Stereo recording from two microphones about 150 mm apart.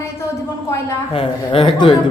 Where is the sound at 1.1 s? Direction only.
35° left (ahead or behind).